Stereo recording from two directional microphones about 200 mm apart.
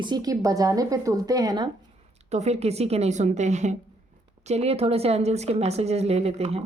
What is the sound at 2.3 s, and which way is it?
Speech, 35° right (ahead or behind).